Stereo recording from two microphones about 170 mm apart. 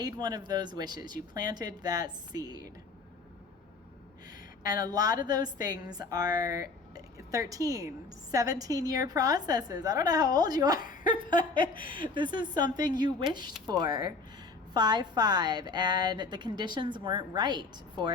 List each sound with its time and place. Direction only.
0.0 s a woman's voice: 25° right (ahead or behind)
4.7 s a woman's voice: 25° right (ahead or behind)
10.8 s speech: 50° left (ahead or behind)
12.1 s a woman's voice: 25° right (ahead or behind)